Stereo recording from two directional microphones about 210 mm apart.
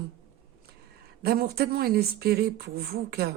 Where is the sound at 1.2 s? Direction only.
50° right (ahead or behind).